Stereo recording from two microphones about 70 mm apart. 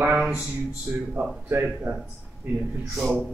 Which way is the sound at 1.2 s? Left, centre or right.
Right.